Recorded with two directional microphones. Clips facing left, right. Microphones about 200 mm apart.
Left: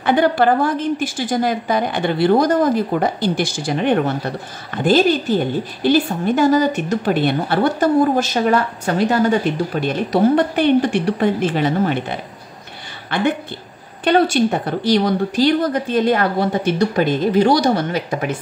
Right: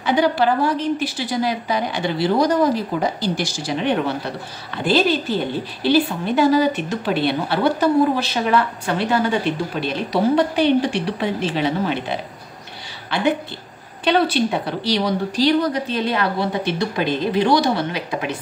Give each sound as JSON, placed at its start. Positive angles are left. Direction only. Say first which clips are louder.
{"t": 0.0, "sound": "a woman's voice", "louder": "left 3 dB", "side_deg": 55}
{"t": 14.0, "sound": "a woman's voice", "louder": "left 3 dB", "side_deg": 45}